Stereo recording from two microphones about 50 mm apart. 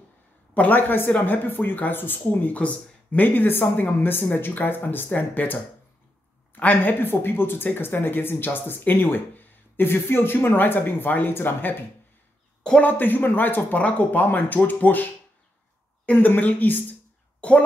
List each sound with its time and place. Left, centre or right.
0.6 s speech: left
12.8 s speech: left
16.1 s speech: left
17.4 s a woman's voice: left